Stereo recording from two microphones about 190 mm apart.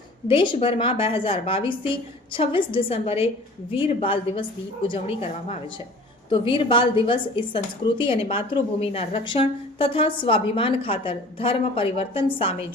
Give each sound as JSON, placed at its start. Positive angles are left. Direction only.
{"t": 0.3, "sound": "a woman's voice", "side_deg": 25}